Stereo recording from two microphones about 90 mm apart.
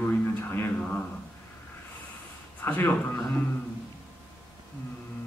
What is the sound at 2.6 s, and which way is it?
Speech, 20° left (ahead or behind).